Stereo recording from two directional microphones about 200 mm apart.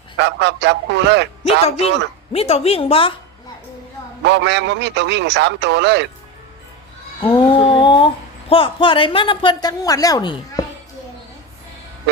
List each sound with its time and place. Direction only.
0.2 s a man's voice: 60° right (ahead or behind)
1.5 s a woman's voice: 30° left (ahead or behind)
4.2 s a man's voice: 60° right (ahead or behind)
7.2 s speech: 25° left (ahead or behind)